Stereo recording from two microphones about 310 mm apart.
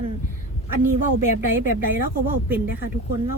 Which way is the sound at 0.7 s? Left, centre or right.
Right.